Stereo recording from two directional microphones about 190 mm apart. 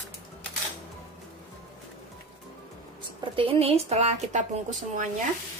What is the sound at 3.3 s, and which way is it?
Speech, 30° right (ahead or behind).